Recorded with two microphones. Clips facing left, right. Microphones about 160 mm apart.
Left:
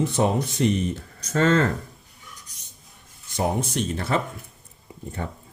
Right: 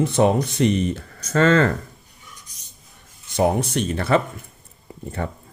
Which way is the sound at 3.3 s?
65° right (ahead or behind).